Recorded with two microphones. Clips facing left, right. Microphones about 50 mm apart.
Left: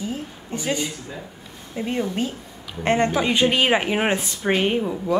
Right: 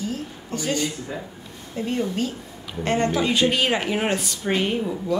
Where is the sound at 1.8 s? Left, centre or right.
Centre.